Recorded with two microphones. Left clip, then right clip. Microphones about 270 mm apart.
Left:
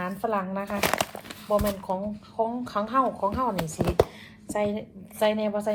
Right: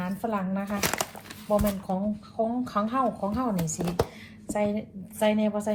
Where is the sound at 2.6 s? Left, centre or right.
Left.